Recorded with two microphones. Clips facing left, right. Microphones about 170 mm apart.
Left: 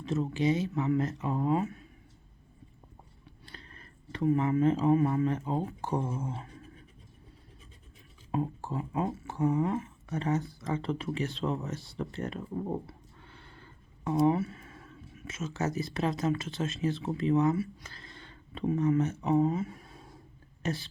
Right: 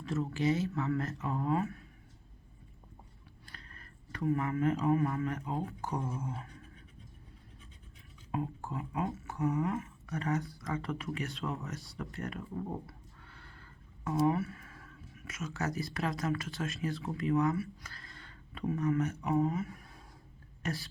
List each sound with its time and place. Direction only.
0.0 s speech: 20° left (ahead or behind)
3.4 s speech: 25° left (ahead or behind)
8.3 s a woman's voice: 30° left (ahead or behind)